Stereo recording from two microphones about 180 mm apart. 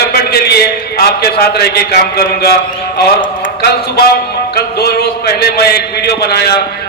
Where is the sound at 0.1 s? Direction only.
60° left (ahead or behind).